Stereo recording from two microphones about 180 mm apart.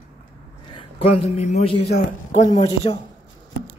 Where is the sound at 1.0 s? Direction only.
35° left (ahead or behind).